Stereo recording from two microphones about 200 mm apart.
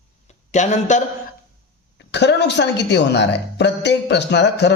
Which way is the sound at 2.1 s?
60° left (ahead or behind).